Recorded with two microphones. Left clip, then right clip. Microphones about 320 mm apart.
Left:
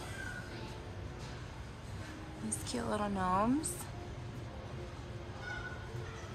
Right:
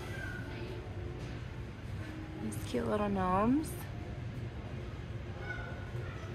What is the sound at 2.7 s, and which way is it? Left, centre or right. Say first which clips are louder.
Speech: right 3 dB; centre.